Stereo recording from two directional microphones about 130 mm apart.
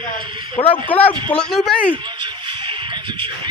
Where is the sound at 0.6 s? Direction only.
40° left (ahead or behind).